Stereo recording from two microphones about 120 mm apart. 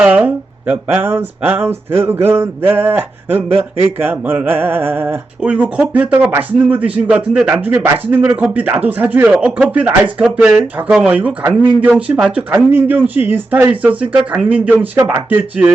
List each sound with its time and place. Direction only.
0.0 s speech: 15° right (ahead or behind)